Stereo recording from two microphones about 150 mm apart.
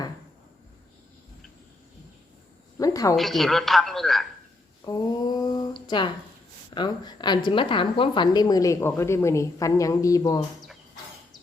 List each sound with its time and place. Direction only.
2.7 s a sound: 25° left (ahead or behind)
3.2 s a woman's voice: centre (ahead or behind)
4.9 s a woman's voice: 25° left (ahead or behind)